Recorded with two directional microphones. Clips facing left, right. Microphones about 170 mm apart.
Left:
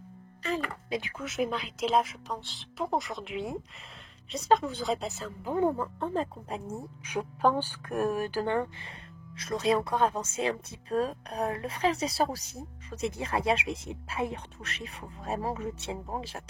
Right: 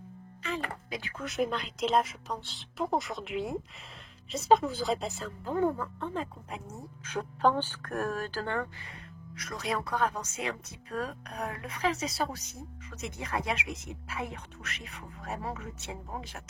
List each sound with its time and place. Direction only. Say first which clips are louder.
0.4 s music: left 4 dB; 35° left (ahead or behind)
0.8 s speech: left 6 dB; 25° left (ahead or behind)
1.1 s speech: right 3 dB; centre (ahead or behind)
5.4 s speech: left 1 dB; 15° left (ahead or behind)
5.8 s a woman's voice: left 4 dB; 35° left (ahead or behind)
7.0 s speech: even; 15° left (ahead or behind); by 16.4 s 30° left (ahead or behind)